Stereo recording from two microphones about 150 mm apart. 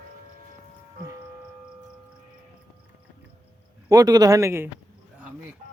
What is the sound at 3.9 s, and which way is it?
Speech, 25° right (ahead or behind).